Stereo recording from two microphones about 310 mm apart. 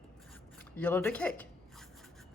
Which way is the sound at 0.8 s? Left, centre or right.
Centre.